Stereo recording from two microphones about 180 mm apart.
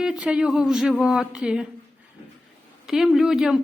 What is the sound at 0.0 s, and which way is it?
Speech, 5° right (ahead or behind).